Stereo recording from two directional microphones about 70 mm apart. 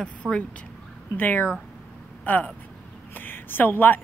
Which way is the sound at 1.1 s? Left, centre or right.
Left.